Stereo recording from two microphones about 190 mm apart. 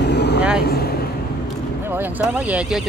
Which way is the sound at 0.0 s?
60° left (ahead or behind).